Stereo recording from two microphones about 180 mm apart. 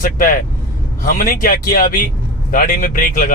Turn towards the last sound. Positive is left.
turn(degrees=50)  # may be behind; listen again after turning